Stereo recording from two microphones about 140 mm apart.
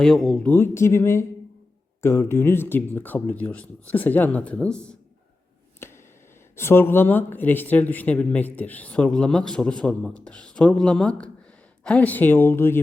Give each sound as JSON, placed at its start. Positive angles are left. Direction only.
{"t": 0.0, "sound": "speech", "side_deg": 0}
{"t": 0.5, "sound": "speech", "side_deg": 20}
{"t": 5.8, "sound": "a sound", "side_deg": 15}
{"t": 6.6, "sound": "speech", "side_deg": 15}